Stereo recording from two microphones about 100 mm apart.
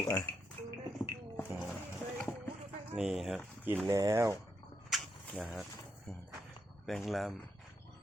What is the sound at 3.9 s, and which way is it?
Speech, 35° right (ahead or behind).